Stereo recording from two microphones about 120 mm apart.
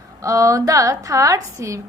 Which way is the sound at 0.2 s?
25° right (ahead or behind).